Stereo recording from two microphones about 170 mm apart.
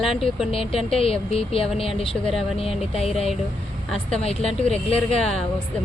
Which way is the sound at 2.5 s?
35° left (ahead or behind).